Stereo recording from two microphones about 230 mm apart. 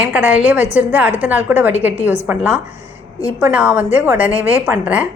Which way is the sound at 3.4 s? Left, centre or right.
Centre.